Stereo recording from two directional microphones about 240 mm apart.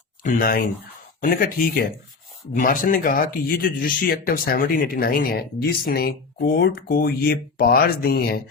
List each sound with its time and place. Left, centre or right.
0.2 s speech: left